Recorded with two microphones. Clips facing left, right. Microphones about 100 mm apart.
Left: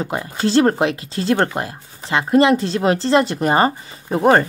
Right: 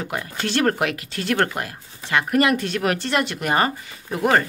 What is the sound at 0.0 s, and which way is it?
Speech, 25° left (ahead or behind).